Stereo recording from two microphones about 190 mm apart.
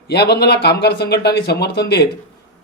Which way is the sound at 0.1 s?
60° left (ahead or behind).